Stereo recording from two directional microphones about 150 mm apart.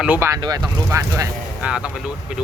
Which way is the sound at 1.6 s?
5° right (ahead or behind).